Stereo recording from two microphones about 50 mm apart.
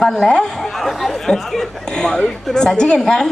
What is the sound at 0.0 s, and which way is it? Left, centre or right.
Speech, centre.